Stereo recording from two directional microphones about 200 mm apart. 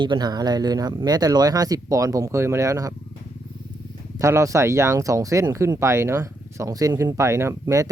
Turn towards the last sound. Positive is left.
turn(degrees=-15)  # may be behind; listen again after turning